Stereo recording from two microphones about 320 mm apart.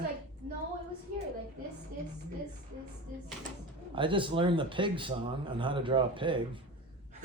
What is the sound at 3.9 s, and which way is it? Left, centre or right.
Speech, centre.